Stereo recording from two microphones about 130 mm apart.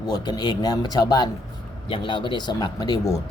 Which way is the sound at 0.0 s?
30° left (ahead or behind).